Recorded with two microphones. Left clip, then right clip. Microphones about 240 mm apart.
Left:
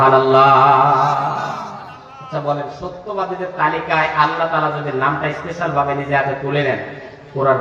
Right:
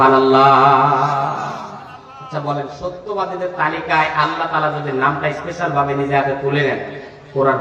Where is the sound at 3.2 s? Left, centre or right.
Right.